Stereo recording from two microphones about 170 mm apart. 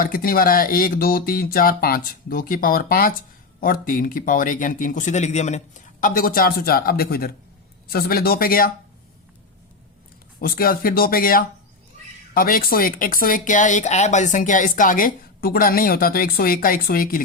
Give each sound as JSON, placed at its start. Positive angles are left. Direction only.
{"t": 0.0, "sound": "speech", "side_deg": 60}
{"t": 10.4, "sound": "speech", "side_deg": 60}